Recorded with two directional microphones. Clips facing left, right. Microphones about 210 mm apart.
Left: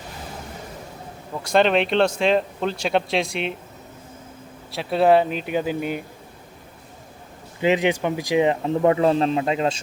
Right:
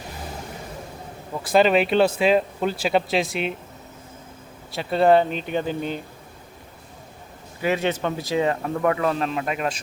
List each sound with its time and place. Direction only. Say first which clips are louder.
1.3 s speech: right 1 dB; 5° right (ahead or behind)
4.7 s speech: even; centre (ahead or behind)
7.6 s speech: left 3 dB; 15° left (ahead or behind)